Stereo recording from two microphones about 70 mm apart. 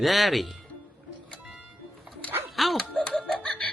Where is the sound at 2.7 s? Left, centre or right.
Centre.